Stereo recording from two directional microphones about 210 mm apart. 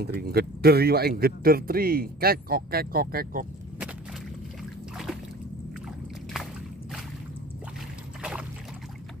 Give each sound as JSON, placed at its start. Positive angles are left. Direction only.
{"t": 0.0, "sound": "speech", "side_deg": -50}